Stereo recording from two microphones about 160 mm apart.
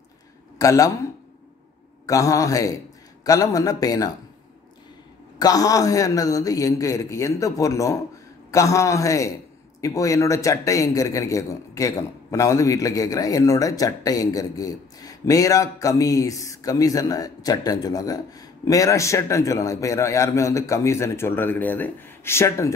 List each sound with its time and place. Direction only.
0.6 s a man's voice: 20° left (ahead or behind)
2.0 s a man's voice: 20° left (ahead or behind)
5.4 s a man's voice: 25° left (ahead or behind)